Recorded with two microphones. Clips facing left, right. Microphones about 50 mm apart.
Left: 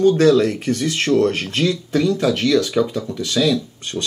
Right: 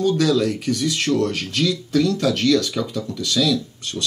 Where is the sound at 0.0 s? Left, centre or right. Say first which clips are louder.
Left 5 dB; left.